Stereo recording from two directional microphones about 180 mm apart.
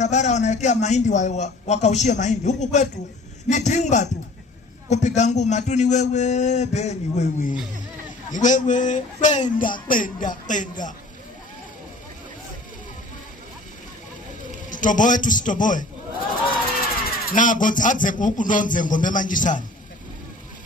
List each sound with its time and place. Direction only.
0.0 s a man's voice: 40° left (ahead or behind)
14.7 s speech: 45° left (ahead or behind)
17.3 s speech: 45° left (ahead or behind)